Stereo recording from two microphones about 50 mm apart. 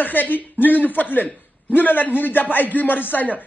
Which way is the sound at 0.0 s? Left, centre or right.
Left.